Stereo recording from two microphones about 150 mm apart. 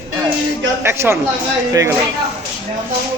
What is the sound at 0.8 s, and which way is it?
Speech, 15° right (ahead or behind).